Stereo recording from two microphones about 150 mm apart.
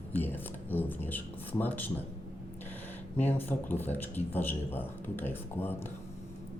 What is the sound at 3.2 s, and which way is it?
Speech, 15° left (ahead or behind).